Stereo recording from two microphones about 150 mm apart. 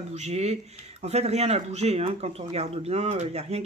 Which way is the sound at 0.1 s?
50° right (ahead or behind).